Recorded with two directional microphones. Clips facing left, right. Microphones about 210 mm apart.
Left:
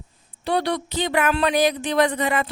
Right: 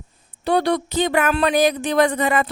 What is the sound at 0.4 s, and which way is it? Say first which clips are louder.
Speech: right 4 dB; 50° right (ahead or behind).